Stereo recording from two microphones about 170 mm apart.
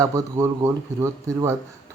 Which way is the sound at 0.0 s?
20° right (ahead or behind).